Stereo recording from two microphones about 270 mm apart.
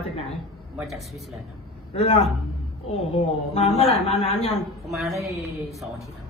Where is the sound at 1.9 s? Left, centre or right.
Left.